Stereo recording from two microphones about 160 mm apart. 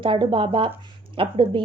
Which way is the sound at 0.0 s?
30° right (ahead or behind).